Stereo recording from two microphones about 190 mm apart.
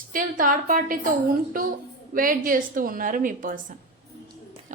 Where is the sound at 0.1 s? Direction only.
45° right (ahead or behind).